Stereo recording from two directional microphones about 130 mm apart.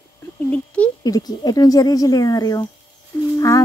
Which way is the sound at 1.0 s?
30° left (ahead or behind).